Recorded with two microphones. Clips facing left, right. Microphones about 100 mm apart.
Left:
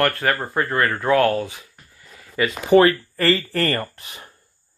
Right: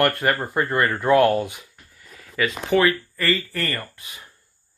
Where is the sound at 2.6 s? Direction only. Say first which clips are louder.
Left 6 dB; 40° left (ahead or behind).